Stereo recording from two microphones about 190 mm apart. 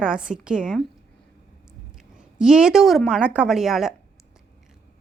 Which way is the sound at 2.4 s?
5° right (ahead or behind).